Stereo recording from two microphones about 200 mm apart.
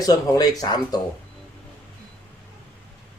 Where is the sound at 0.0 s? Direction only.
20° left (ahead or behind).